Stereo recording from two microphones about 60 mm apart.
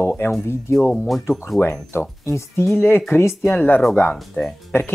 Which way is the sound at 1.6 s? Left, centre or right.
Left.